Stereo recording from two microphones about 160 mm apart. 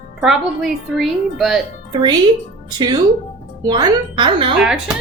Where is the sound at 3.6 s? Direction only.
25° right (ahead or behind).